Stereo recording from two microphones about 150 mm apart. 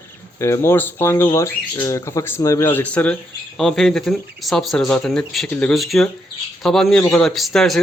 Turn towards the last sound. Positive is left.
turn(degrees=0)  # may be behind; listen again after turning